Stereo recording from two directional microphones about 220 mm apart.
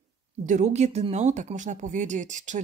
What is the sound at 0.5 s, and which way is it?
Speech, 30° right (ahead or behind).